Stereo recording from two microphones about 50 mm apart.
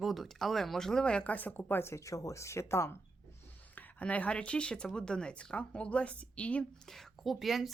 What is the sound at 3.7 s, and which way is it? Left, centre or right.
A woman's voice, left.